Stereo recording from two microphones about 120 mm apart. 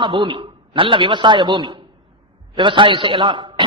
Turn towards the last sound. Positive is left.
turn(degrees=-40)  # may be behind; listen again after turning